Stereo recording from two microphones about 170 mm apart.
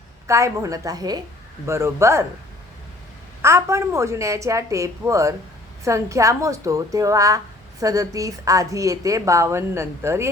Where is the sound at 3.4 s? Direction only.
15° right (ahead or behind).